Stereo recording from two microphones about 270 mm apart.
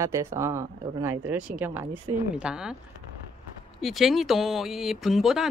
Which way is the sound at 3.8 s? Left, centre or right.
Centre.